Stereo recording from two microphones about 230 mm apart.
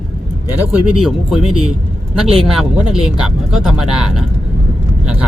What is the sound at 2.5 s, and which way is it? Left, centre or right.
Speech, centre.